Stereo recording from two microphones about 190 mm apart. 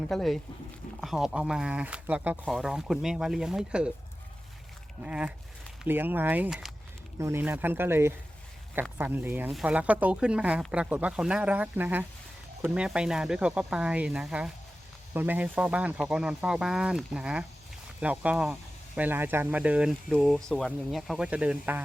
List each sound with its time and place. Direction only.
0.1 s speech: centre (ahead or behind)
5.0 s speech: 5° right (ahead or behind)